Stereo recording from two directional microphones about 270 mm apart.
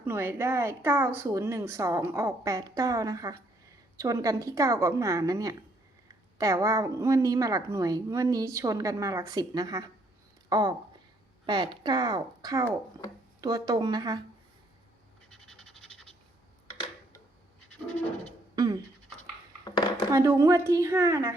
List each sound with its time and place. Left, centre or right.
0.0 s speech: centre
15.4 s scratch: centre
18.5 s scratch: centre
19.6 s dishes: centre
20.1 s speech: centre